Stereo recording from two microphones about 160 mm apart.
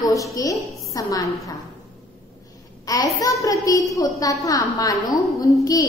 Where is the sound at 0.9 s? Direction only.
20° left (ahead or behind).